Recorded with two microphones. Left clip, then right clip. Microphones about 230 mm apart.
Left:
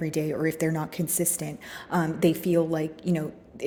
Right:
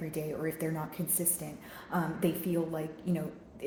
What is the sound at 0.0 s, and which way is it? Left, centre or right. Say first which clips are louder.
A woman's voice: left 8 dB; left.